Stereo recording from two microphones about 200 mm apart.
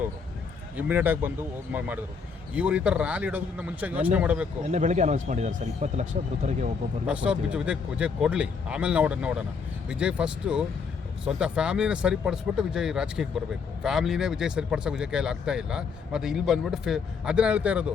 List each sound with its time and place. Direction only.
0.8 s speech: 10° right (ahead or behind)
4.6 s speech: 35° right (ahead or behind)
7.1 s speech: 5° right (ahead or behind)